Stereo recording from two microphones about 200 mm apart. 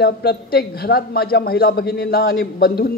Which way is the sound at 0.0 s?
55° left (ahead or behind).